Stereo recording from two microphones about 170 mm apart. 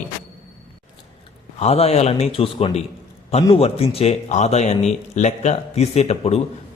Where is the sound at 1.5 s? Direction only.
35° left (ahead or behind).